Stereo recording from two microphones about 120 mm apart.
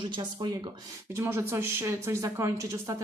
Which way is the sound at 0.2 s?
35° right (ahead or behind).